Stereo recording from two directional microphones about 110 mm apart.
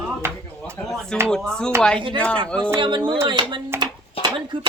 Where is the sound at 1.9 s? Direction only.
50° right (ahead or behind).